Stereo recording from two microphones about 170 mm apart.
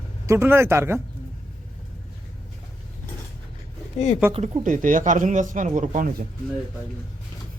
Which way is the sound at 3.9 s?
40° left (ahead or behind).